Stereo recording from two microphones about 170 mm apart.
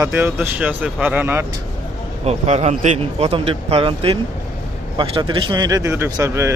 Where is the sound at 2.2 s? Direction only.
40° right (ahead or behind).